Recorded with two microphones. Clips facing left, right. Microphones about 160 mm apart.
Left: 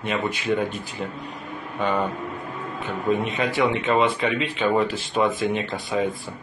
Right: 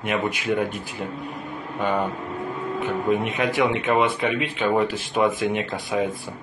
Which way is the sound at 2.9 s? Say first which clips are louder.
Even; 15° right (ahead or behind).